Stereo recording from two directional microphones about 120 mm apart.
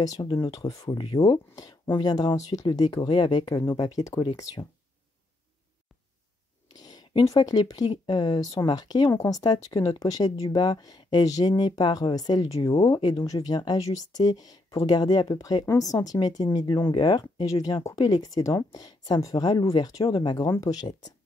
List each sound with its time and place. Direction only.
0.0 s speech: 30° left (ahead or behind)
0.8 s speech: 40° left (ahead or behind)
1.5 s speech: 30° left (ahead or behind)
6.8 s speech: 35° left (ahead or behind)